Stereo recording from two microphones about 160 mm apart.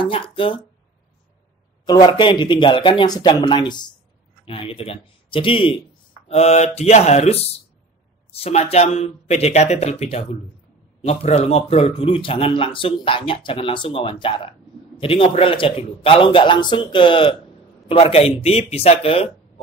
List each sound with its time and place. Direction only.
0.0 s speech: 35° left (ahead or behind)
1.9 s speech: 30° left (ahead or behind)